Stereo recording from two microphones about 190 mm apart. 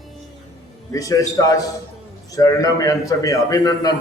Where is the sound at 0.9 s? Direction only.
20° left (ahead or behind).